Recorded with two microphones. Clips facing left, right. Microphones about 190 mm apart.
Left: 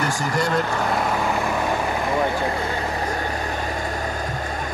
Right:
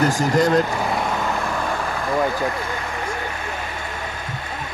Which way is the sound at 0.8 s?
5° left (ahead or behind).